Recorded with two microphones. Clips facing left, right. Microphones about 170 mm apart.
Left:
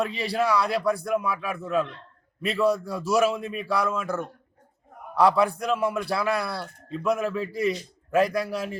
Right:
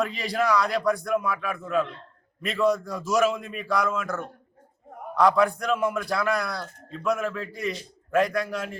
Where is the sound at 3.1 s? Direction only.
5° left (ahead or behind).